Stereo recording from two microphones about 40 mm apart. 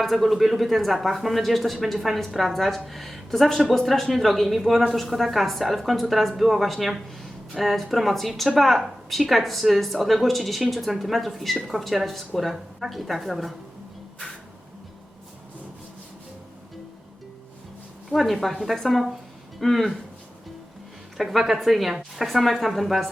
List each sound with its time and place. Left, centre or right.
0.0 s a woman's voice: centre
18.1 s a woman's voice: centre
21.2 s a woman's voice: centre